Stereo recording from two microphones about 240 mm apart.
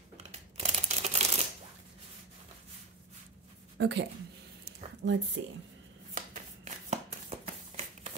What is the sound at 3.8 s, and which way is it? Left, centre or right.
A woman's voice, right.